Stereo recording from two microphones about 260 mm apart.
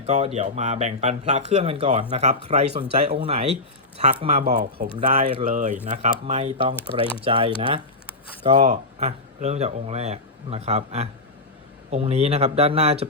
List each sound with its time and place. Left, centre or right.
0.0 s speech: right
3.9 s speech: right